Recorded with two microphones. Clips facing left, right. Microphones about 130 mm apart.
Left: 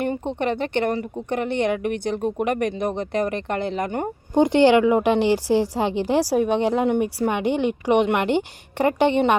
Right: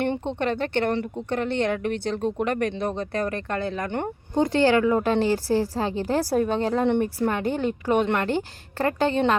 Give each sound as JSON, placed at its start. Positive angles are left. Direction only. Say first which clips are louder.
{"t": 0.0, "sound": "a woman's voice", "louder": "left 1 dB", "side_deg": 10}